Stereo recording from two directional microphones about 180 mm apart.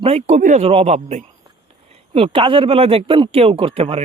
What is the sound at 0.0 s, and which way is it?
A man's voice, 35° right (ahead or behind).